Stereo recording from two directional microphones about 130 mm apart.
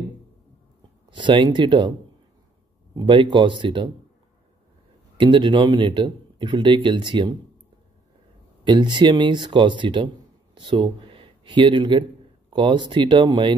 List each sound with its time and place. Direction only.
1.1 s speech: 40° right (ahead or behind)
2.9 s speech: 35° right (ahead or behind)
5.1 s speech: 40° right (ahead or behind)
8.6 s speech: 35° right (ahead or behind)